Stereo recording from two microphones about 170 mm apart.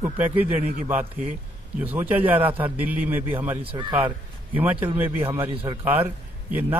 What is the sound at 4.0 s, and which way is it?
A man's voice, 10° right (ahead or behind).